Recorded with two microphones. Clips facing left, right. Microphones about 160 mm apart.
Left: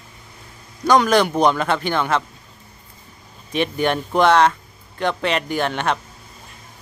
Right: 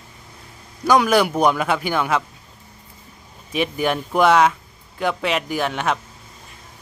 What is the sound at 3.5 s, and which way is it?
Speech, 5° right (ahead or behind).